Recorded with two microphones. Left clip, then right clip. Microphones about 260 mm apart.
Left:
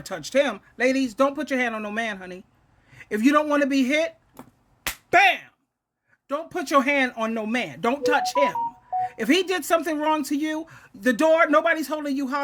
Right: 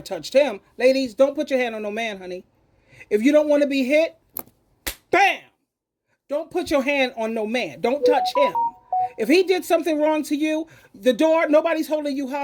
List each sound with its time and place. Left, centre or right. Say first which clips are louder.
0.0 s a man's voice: right 3 dB; centre
3.6 s speech: right 3 dB; left
5.1 s speech: even; centre